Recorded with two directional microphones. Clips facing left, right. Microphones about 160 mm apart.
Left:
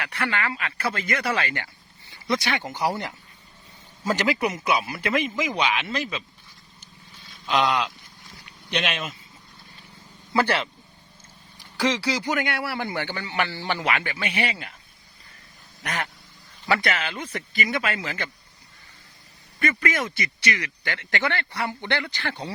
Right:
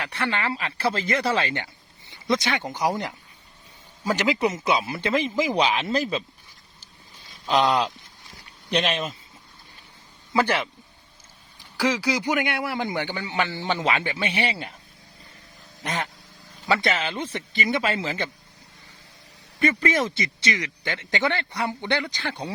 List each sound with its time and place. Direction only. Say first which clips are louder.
0.0 s speech: right 1 dB; 25° right (ahead or behind)
7.4 s speech: right 2 dB; 35° right (ahead or behind)
10.3 s a man's voice: even; 15° right (ahead or behind); by 14.7 s 30° right (ahead or behind)
15.8 s speech: right 1 dB; 25° right (ahead or behind)
19.6 s a man's voice: right 3 dB; 30° right (ahead or behind)